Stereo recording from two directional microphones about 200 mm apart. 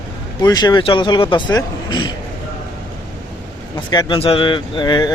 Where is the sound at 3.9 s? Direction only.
25° left (ahead or behind).